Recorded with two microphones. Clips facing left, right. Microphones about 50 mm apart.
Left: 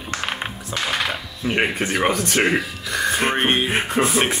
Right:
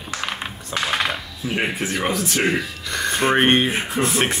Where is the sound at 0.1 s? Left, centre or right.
Centre.